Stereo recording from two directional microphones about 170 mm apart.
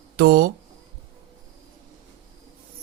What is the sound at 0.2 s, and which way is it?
Speech, 55° right (ahead or behind).